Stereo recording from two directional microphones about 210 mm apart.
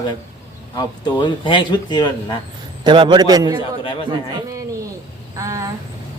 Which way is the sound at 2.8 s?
20° right (ahead or behind).